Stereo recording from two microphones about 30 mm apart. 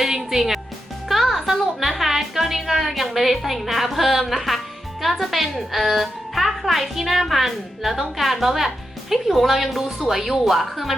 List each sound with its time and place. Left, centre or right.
0.2 s a woman's voice: centre
1.0 s music: centre
2.9 s a woman's voice: centre